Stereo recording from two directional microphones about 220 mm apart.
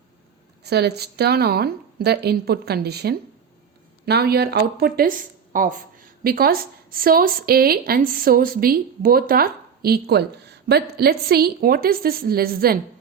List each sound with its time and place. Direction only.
0.6 s a woman's voice: 50° right (ahead or behind)